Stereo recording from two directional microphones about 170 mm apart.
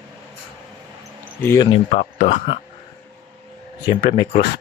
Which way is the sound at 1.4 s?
15° left (ahead or behind).